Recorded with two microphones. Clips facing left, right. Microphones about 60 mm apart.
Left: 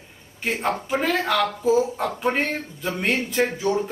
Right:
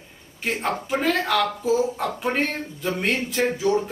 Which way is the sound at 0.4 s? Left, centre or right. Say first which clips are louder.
Left 1 dB; centre.